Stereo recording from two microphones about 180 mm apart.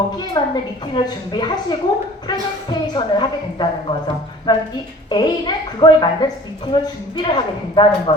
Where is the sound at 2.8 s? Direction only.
25° left (ahead or behind).